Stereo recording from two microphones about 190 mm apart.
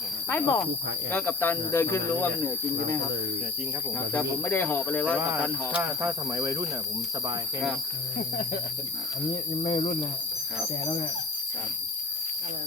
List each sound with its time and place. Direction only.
0.3 s speech: 10° left (ahead or behind)
4.1 s speech: 10° left (ahead or behind)
5.2 s speech: 10° right (ahead or behind)
9.6 s speech: 30° left (ahead or behind)